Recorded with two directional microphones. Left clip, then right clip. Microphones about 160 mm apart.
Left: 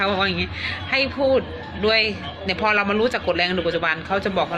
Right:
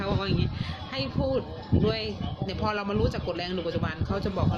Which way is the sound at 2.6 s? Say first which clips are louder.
Left 9 dB; 20° right (ahead or behind).